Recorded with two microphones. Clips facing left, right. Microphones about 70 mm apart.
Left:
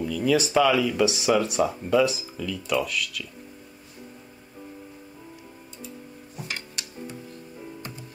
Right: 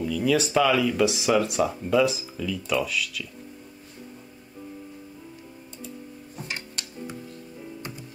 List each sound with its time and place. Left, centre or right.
0.0 s speech: centre